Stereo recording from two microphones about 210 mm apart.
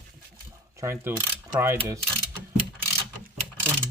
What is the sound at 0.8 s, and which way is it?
Mechanisms, 10° right (ahead or behind).